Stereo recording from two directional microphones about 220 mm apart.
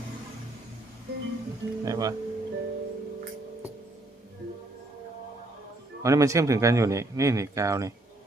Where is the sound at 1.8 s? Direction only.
15° right (ahead or behind).